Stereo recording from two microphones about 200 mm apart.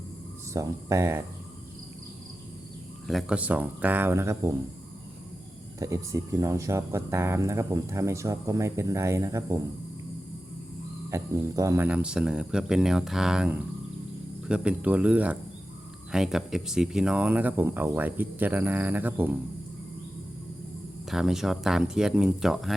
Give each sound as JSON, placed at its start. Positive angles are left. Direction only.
{"t": 0.5, "sound": "speech", "side_deg": -15}
{"t": 3.1, "sound": "speech", "side_deg": 0}
{"t": 5.8, "sound": "speech", "side_deg": -15}
{"t": 11.1, "sound": "speech", "side_deg": -15}
{"t": 21.1, "sound": "speech", "side_deg": 0}